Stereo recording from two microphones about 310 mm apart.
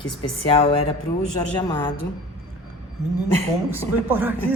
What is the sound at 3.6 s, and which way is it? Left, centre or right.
Speech, centre.